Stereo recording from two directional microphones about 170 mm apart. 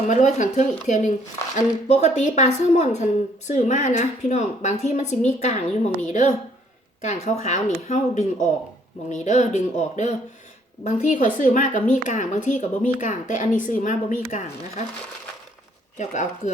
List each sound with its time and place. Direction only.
0.1 s a woman's voice: 45° left (ahead or behind)
7.3 s a woman's voice: 45° left (ahead or behind)
16.0 s a woman's voice: 45° left (ahead or behind)